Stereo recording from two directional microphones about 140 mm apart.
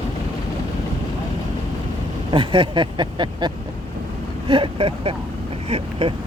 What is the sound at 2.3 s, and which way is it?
Speech, 35° right (ahead or behind).